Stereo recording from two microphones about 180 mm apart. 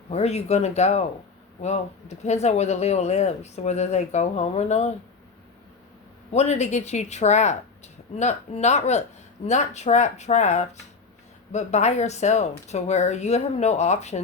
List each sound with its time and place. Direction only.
0.1 s speech: 35° left (ahead or behind)
6.3 s speech: 40° left (ahead or behind)